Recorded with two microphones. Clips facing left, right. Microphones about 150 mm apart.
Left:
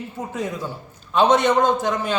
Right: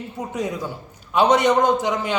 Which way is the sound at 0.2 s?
15° right (ahead or behind).